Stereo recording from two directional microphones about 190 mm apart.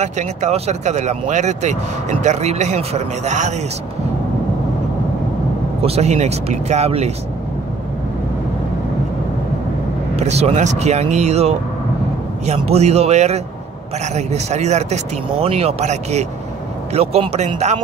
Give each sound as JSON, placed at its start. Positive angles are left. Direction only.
{"t": 0.0, "sound": "speech", "side_deg": -35}
{"t": 5.8, "sound": "speech", "side_deg": -35}
{"t": 10.1, "sound": "speech", "side_deg": -35}